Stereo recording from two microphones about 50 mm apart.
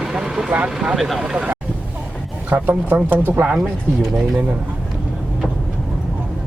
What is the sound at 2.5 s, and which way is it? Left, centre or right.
Speech, right.